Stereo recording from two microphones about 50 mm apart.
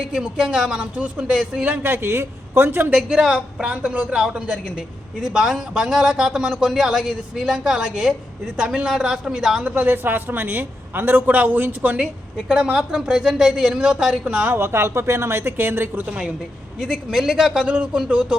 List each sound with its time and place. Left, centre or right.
0.1 s speech: centre
1.8 s speech: right
3.1 s speech: centre
9.6 s a woman's voice: right
12.5 s speech: centre
14.5 s speech: right
16.0 s speech: centre